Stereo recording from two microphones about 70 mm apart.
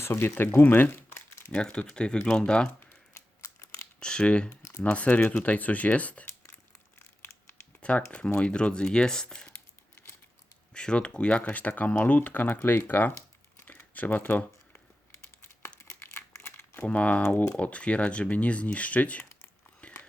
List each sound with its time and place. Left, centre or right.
0.0 s speech: left
1.5 s speech: centre
3.4 s crumpling: left
4.0 s speech: centre
7.8 s a sound: centre
8.1 s speech: centre
10.8 s speech: centre
13.6 s tearing: left
15.8 s crumpling: left
16.8 s speech: centre
17.2 s speech: left
17.6 s speech: centre
19.8 s a sound: centre